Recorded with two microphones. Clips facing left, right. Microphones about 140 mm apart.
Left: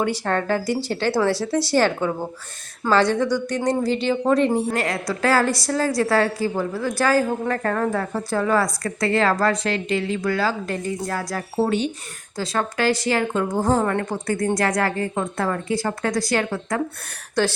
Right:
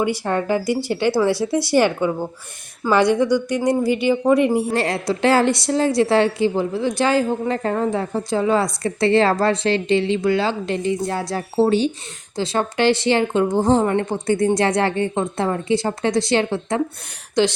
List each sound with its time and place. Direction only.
0.0 s speech: 10° right (ahead or behind)
4.7 s a woman's voice: 30° right (ahead or behind)